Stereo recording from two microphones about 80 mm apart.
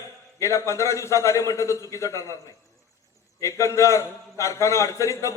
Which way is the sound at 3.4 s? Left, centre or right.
Left.